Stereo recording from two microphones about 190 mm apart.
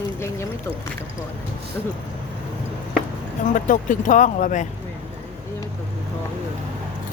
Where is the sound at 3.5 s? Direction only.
45° left (ahead or behind).